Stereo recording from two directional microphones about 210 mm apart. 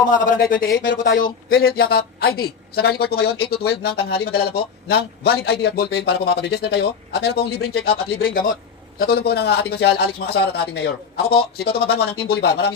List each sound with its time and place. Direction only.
0.0 s a man's voice: 40° left (ahead or behind)